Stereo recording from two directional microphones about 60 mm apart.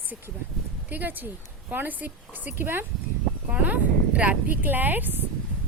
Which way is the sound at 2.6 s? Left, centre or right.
Right.